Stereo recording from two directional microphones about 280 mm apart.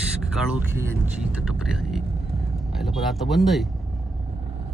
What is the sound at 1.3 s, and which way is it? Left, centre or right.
Speech, centre.